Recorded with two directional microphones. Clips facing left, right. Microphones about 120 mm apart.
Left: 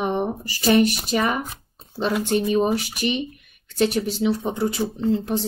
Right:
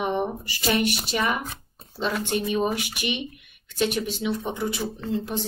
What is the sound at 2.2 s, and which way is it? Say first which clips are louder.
Speech: left 5 dB; 35° left (ahead or behind).